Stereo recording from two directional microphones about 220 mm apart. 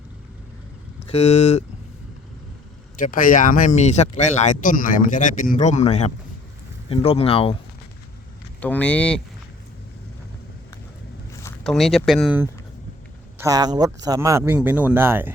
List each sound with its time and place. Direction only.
1.0 s speech: 30° left (ahead or behind)
3.0 s speech: 40° left (ahead or behind)
8.6 s speech: 5° left (ahead or behind)
11.6 s speech: centre (ahead or behind)
13.4 s speech: 15° right (ahead or behind)